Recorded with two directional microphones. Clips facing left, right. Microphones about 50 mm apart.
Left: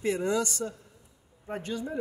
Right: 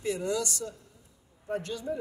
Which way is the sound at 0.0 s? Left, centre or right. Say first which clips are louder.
Left 3 dB; left.